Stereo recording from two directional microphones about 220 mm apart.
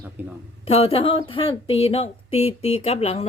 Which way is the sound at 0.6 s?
25° left (ahead or behind).